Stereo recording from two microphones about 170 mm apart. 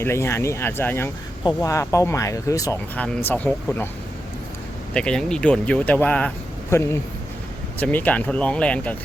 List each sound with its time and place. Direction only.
0.0 s speech: 15° left (ahead or behind)
2.9 s speech: 10° left (ahead or behind)
4.9 s speech: 5° left (ahead or behind)